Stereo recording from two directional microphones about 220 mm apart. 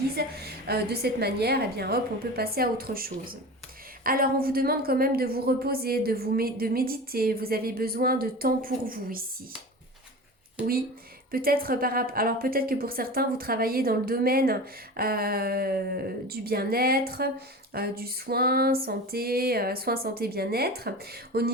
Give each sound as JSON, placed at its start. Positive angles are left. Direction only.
{"t": 0.2, "sound": "a woman's voice", "side_deg": -45}
{"t": 11.3, "sound": "a woman's voice", "side_deg": -40}